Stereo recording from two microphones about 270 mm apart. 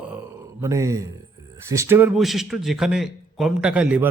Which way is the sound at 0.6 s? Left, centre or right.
Centre.